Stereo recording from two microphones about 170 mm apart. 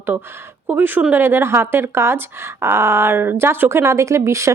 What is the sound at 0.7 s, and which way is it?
Speech, 10° right (ahead or behind).